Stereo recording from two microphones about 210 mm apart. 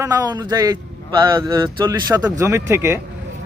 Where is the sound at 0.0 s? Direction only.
15° right (ahead or behind).